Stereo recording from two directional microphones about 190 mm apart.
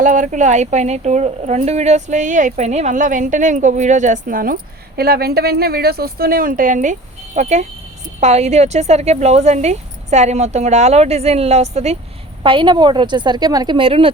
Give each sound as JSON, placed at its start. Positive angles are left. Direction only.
{"t": 0.0, "sound": "a woman's voice", "side_deg": -40}